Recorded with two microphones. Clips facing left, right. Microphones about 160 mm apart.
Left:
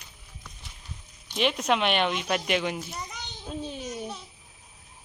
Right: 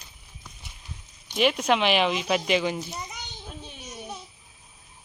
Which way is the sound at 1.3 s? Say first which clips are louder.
Right 3 dB; 5° right (ahead or behind).